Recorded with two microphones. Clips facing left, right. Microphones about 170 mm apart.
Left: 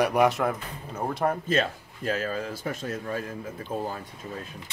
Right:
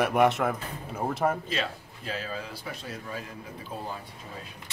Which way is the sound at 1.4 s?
45° left (ahead or behind).